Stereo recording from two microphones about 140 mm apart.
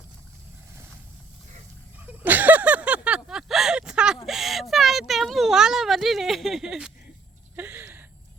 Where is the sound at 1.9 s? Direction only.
10° right (ahead or behind).